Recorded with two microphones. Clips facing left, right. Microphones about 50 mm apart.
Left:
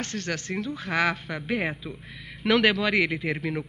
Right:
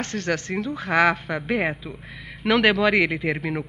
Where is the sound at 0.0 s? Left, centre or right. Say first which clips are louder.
Right 5 dB; right.